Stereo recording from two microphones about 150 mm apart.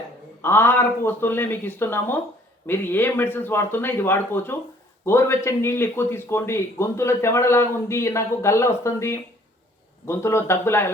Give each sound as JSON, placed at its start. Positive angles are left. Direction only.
{"t": 0.4, "sound": "a man's voice", "side_deg": 15}